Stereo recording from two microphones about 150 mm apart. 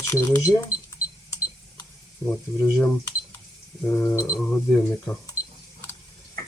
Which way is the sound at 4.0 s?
20° left (ahead or behind).